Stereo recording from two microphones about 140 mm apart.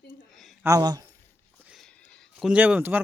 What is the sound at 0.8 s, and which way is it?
Speech, 30° right (ahead or behind).